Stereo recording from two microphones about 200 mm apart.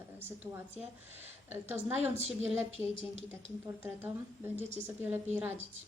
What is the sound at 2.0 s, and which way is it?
Speech, 35° right (ahead or behind).